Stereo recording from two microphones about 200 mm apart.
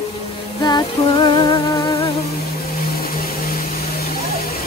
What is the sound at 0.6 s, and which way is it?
Music, 20° left (ahead or behind).